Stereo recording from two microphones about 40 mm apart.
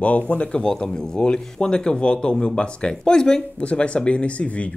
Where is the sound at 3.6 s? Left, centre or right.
Left.